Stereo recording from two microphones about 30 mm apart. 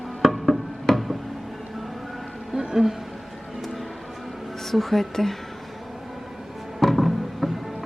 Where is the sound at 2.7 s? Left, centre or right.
Centre.